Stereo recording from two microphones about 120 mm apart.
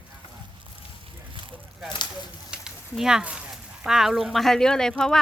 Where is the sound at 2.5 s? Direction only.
5° right (ahead or behind).